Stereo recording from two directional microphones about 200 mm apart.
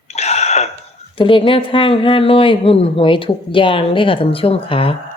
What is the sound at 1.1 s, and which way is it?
A woman's voice, 25° left (ahead or behind).